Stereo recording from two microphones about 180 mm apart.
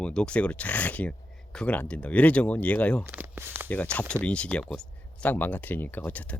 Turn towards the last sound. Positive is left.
turn(degrees=10)  # may be behind; listen again after turning